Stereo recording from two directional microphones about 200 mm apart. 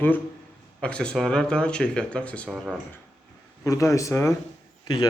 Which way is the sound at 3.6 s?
15° left (ahead or behind).